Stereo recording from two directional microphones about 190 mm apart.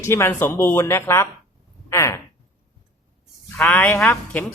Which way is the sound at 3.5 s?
10° left (ahead or behind).